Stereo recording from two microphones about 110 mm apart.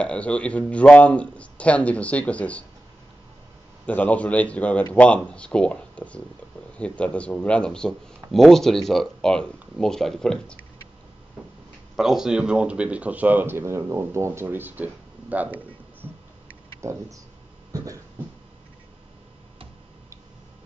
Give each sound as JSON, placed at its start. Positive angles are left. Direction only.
{"t": 0.0, "sound": "speech", "side_deg": 10}
{"t": 3.8, "sound": "speech", "side_deg": 15}
{"t": 12.0, "sound": "speech", "side_deg": -5}
{"t": 16.8, "sound": "speech", "side_deg": -30}
{"t": 17.7, "sound": "a sound", "side_deg": -30}